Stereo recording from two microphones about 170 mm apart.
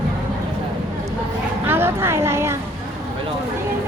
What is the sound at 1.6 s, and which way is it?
Speech, 10° right (ahead or behind).